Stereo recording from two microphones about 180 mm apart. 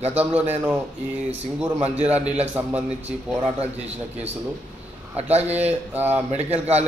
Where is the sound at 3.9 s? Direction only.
35° right (ahead or behind).